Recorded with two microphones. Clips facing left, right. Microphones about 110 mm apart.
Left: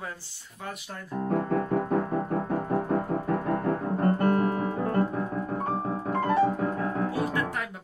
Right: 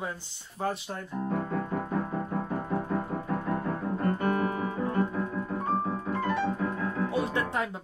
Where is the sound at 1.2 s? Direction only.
50° left (ahead or behind).